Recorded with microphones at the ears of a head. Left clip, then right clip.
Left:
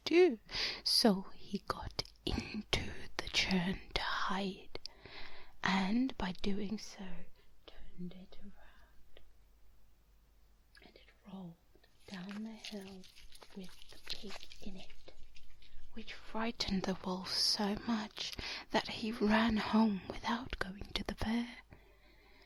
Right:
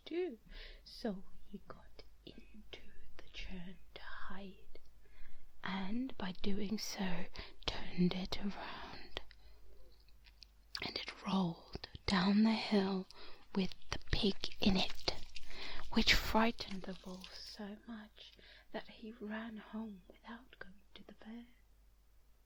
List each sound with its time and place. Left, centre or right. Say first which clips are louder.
0.0 s whispering: left 13 dB; left
6.8 s whispering: right 8 dB; right
10.7 s whispering: right 18 dB; right
13.5 s a sound: right 15 dB; right
14.4 s whispering: right 16 dB; right
16.6 s speech: left 9 dB; left